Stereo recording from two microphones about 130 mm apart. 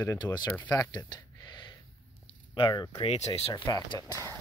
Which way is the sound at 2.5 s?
35° left (ahead or behind).